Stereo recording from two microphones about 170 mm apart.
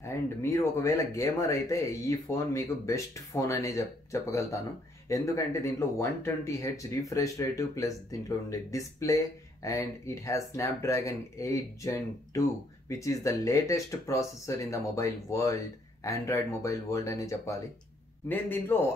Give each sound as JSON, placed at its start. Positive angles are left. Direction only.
{"t": 0.0, "sound": "speech", "side_deg": 15}